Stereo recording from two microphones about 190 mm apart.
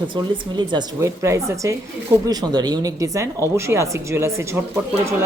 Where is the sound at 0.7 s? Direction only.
20° right (ahead or behind).